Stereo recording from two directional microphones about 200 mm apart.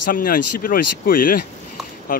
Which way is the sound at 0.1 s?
45° left (ahead or behind).